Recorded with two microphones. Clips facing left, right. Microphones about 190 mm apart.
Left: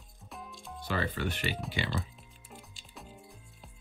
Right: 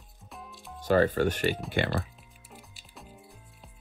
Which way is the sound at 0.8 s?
45° right (ahead or behind).